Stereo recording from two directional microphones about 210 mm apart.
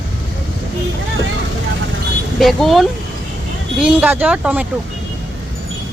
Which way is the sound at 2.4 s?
Centre (ahead or behind).